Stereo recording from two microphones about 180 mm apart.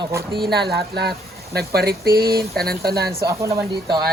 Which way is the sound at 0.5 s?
65° right (ahead or behind).